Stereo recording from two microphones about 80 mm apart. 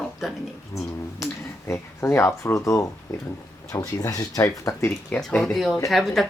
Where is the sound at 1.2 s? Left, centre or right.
Left.